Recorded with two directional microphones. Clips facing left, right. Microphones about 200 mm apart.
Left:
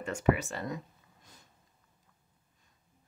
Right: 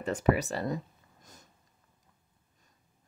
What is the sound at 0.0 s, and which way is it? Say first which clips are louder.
Speech: right 2 dB; 35° right (ahead or behind).